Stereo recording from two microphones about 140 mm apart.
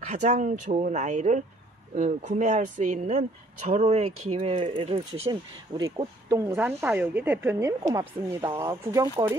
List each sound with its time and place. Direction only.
0.0 s speech: 55° right (ahead or behind)
5.3 s speech: 30° right (ahead or behind)